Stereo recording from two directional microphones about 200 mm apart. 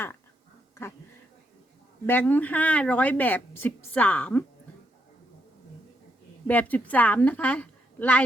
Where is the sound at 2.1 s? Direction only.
10° left (ahead or behind).